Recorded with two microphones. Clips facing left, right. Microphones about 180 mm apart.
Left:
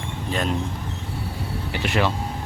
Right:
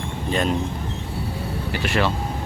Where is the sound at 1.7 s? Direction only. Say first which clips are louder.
Even; 20° left (ahead or behind).